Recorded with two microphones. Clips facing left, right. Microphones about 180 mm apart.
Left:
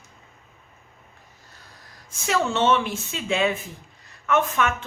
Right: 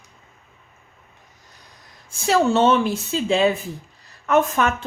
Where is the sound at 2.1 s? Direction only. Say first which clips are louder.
Right 6 dB; 35° right (ahead or behind).